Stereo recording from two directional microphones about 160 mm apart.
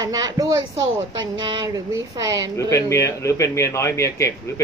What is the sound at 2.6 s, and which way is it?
A man's voice, 20° left (ahead or behind).